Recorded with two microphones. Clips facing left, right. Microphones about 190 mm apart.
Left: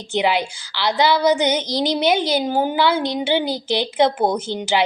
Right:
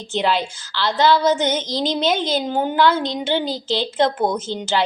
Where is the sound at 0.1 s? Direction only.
15° left (ahead or behind).